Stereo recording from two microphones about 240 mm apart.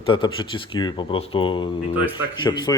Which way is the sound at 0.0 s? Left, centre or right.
Left.